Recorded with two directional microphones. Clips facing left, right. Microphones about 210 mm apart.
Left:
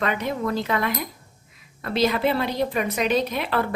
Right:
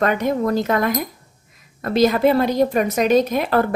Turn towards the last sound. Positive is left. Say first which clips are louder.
# right 6 dB
turn(degrees=-45)  # may be behind; listen again after turning